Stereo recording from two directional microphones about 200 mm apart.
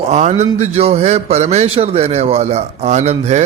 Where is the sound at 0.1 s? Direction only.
35° right (ahead or behind).